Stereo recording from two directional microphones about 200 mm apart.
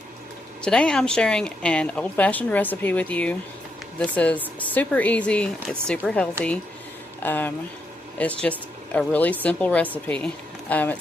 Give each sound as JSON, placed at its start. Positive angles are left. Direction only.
{"t": 0.6, "sound": "speech", "side_deg": 5}
{"t": 5.5, "sound": "speech", "side_deg": -5}